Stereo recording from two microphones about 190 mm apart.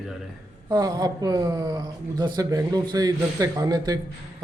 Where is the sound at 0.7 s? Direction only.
20° right (ahead or behind).